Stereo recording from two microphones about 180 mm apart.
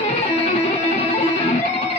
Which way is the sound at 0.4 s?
35° left (ahead or behind).